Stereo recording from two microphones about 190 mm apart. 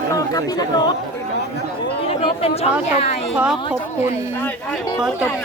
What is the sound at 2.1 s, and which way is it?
Speech, 35° left (ahead or behind).